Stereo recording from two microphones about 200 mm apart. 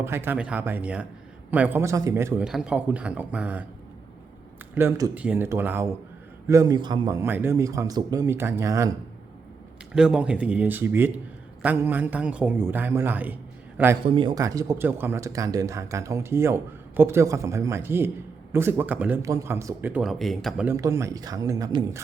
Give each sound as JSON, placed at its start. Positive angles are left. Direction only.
{"t": 0.0, "sound": "speech", "side_deg": -10}
{"t": 4.7, "sound": "speech", "side_deg": -10}
{"t": 9.9, "sound": "a man's voice", "side_deg": -5}
{"t": 14.0, "sound": "speech", "side_deg": -25}
{"t": 20.7, "sound": "speech", "side_deg": -15}